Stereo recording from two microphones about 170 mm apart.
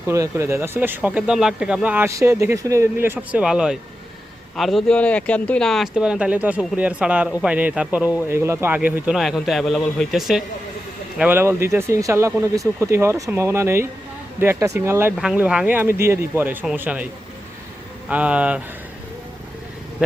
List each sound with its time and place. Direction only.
0.1 s a man's voice: 15° right (ahead or behind)
11.2 s speech: 10° right (ahead or behind)
15.1 s speech: 5° right (ahead or behind)
18.1 s speech: 5° right (ahead or behind)